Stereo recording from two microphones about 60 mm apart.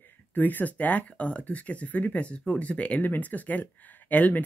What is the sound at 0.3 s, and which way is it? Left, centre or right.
Speech, left.